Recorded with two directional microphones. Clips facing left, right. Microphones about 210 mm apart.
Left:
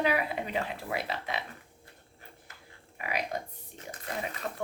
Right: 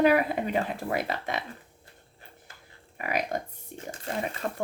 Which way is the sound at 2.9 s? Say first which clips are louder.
Right 4 dB; 50° right (ahead or behind).